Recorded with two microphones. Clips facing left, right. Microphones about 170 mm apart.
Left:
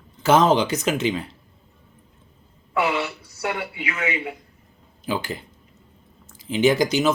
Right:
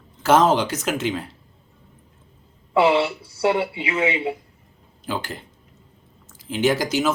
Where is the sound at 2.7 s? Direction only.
30° right (ahead or behind).